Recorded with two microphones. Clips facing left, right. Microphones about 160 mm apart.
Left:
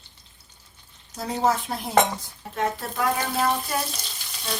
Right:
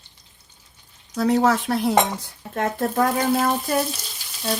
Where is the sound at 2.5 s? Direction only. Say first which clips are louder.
Right 4 dB; 50° right (ahead or behind).